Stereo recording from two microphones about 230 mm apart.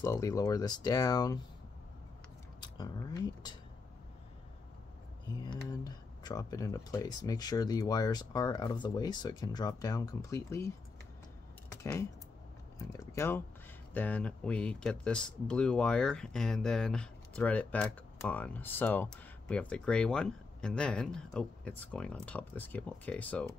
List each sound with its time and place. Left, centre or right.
0.0 s speech: centre
2.6 s speech: centre
5.3 s speech: centre
11.7 s speech: centre